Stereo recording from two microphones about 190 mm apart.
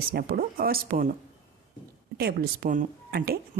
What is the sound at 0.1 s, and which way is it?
Speech, 50° right (ahead or behind).